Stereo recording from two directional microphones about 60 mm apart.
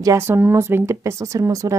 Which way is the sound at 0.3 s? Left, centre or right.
Right.